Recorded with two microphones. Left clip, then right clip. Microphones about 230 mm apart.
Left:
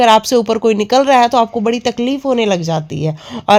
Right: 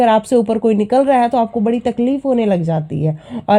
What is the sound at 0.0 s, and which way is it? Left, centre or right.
Speech, left.